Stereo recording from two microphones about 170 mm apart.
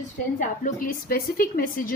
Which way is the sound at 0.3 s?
55° left (ahead or behind).